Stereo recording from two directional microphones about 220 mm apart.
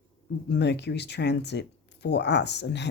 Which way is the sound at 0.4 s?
50° left (ahead or behind).